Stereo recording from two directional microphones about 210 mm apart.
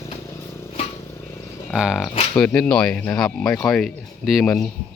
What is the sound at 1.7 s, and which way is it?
Speech, centre (ahead or behind).